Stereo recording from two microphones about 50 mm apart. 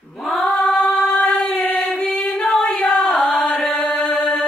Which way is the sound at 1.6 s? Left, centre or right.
Left.